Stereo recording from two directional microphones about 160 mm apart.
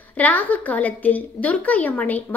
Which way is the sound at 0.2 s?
10° left (ahead or behind).